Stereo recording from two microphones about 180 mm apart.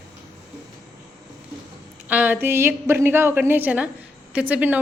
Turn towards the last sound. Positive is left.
turn(degrees=-10)  # may be behind; listen again after turning